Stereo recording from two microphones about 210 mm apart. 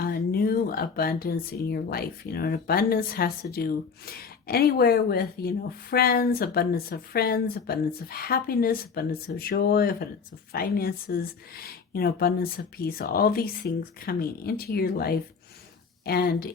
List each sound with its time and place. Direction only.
0.0 s speech: 45° left (ahead or behind)